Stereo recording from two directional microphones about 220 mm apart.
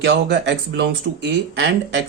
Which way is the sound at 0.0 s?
50° right (ahead or behind).